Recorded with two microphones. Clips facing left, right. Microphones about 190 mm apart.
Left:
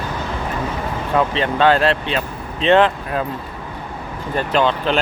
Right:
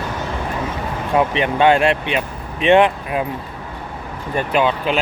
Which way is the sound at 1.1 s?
15° right (ahead or behind).